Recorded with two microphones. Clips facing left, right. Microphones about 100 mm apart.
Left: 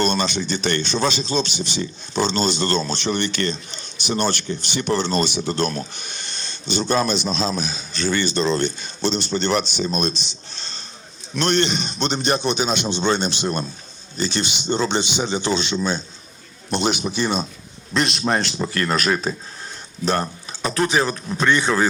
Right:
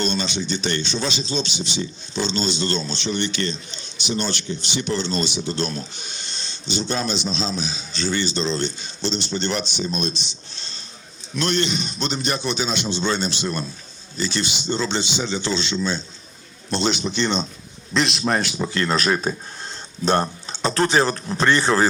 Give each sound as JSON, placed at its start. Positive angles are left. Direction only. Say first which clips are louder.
{"t": 0.0, "sound": "speech", "louder": "left 3 dB", "side_deg": 50}
{"t": 11.3, "sound": "a man's voice", "louder": "left 2 dB", "side_deg": 60}
{"t": 12.3, "sound": "a man's voice", "louder": "left 5 dB", "side_deg": 20}
{"t": 20.5, "sound": "speech", "louder": "right 1 dB", "side_deg": -30}